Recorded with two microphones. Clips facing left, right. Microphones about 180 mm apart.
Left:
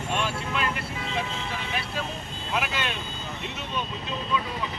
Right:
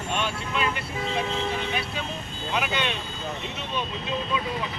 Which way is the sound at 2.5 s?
5° left (ahead or behind).